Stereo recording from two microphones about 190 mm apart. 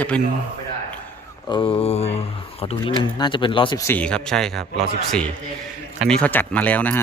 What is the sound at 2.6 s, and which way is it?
Speech, 30° left (ahead or behind).